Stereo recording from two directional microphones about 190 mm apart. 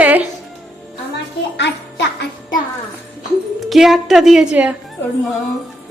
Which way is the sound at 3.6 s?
Centre (ahead or behind).